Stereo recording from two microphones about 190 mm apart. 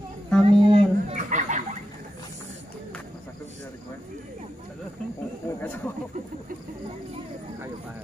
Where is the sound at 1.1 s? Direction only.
40° right (ahead or behind).